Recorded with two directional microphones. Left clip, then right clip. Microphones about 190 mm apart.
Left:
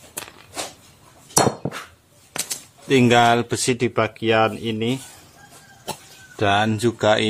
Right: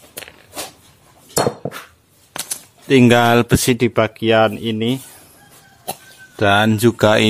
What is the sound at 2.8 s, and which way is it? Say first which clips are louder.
Speech: right 3 dB; 35° right (ahead or behind).